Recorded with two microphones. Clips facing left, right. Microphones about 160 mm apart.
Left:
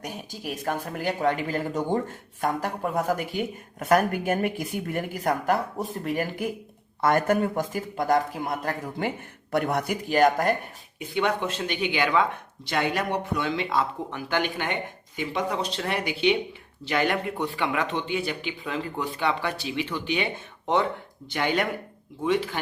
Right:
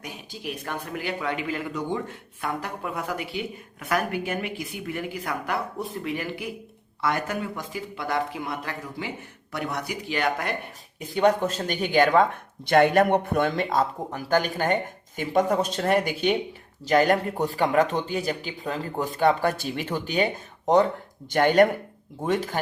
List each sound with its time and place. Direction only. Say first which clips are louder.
0.0 s a man's voice: left 1 dB; 45° left (ahead or behind)
11.0 s speech: right 4 dB; 40° right (ahead or behind)